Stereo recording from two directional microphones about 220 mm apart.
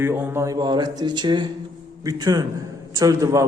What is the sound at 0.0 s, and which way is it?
A man's voice, 10° right (ahead or behind).